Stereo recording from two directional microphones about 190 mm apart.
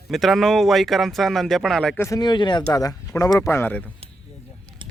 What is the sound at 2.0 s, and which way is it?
Speech, 20° left (ahead or behind).